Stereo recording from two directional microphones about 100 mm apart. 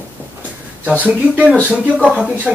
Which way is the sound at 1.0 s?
15° right (ahead or behind).